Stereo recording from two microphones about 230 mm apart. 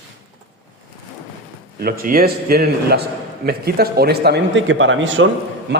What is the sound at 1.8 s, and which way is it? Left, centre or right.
A man's voice, right.